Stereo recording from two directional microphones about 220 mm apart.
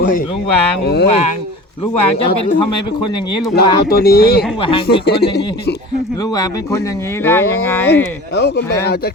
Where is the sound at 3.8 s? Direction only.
45° left (ahead or behind).